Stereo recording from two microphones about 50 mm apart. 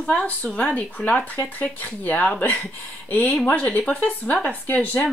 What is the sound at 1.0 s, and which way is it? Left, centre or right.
Speech, left.